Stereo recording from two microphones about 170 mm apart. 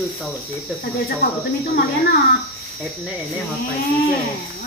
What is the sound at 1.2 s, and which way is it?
Speech, 45° left (ahead or behind).